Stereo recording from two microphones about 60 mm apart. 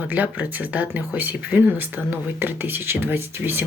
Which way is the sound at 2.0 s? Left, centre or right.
Right.